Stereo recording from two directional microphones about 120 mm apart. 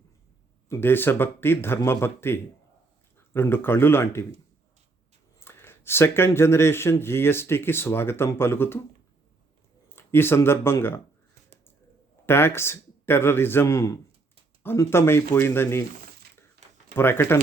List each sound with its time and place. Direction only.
0.7 s speech: 20° left (ahead or behind)
5.4 s speech: 20° left (ahead or behind)
9.9 s speech: 20° left (ahead or behind)
12.2 s a man's voice: 20° left (ahead or behind)
16.9 s speech: 20° left (ahead or behind)